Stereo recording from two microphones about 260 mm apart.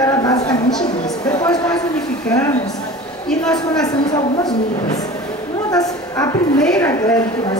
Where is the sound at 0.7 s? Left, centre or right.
Centre.